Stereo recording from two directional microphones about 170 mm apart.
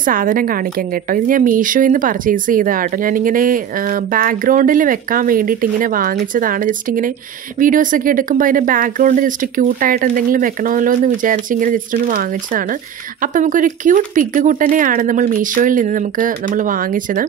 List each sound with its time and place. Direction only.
0.0 s a woman's voice: 55° right (ahead or behind)